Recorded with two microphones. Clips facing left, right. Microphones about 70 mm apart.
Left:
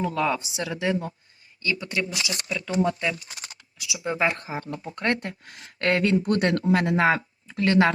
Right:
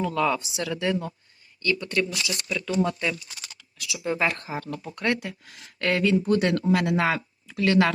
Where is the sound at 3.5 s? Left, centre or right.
Left.